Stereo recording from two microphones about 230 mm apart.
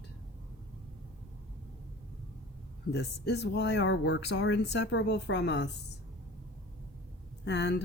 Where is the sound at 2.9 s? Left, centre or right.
Left.